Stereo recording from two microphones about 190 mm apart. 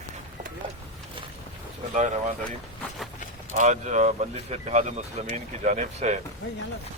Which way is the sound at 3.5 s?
40° right (ahead or behind).